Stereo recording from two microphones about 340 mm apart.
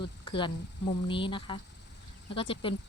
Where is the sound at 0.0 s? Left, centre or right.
Centre.